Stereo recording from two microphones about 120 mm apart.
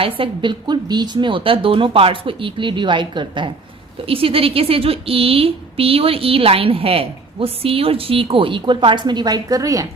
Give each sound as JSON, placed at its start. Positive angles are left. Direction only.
{"t": 0.0, "sound": "a woman's voice", "side_deg": -45}